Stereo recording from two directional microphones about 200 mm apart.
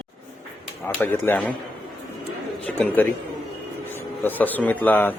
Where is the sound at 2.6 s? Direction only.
10° left (ahead or behind).